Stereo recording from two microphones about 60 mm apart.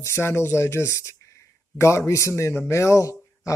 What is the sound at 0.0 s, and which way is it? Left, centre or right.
Speech, left.